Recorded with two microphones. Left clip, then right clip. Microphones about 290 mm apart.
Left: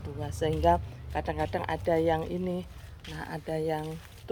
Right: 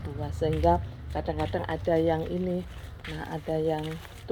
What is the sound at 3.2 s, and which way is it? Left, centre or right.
Speech, centre.